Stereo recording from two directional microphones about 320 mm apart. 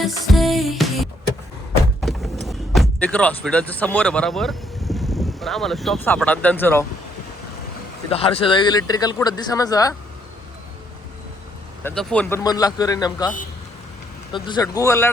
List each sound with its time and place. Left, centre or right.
0.3 s music: centre
2.0 s a sound: centre
2.5 s speech: centre
8.1 s speech: centre
11.8 s speech: centre
14.3 s speech: centre